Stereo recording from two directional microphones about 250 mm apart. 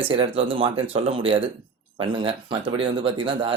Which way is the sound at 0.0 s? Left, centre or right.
Right.